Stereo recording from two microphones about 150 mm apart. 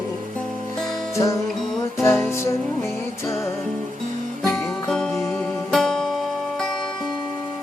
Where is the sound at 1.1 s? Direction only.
20° left (ahead or behind).